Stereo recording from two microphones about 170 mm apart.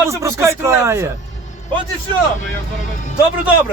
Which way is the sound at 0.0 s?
15° right (ahead or behind).